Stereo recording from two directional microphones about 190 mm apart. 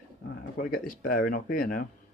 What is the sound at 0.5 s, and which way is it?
Speech, 45° left (ahead or behind).